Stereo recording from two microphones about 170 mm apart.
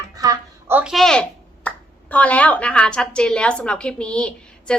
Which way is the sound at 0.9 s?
Centre (ahead or behind).